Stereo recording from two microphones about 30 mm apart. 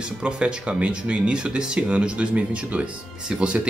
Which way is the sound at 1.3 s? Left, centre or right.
Right.